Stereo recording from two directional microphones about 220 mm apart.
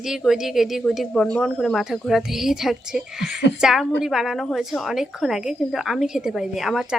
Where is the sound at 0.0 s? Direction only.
Centre (ahead or behind).